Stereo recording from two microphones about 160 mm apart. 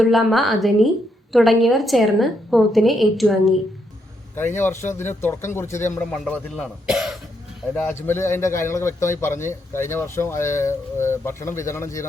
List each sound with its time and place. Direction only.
0.0 s a woman's voice: centre (ahead or behind)
4.4 s a man's voice: 15° left (ahead or behind)
6.3 s speech: 5° left (ahead or behind)
8.0 s a man's voice: 15° left (ahead or behind)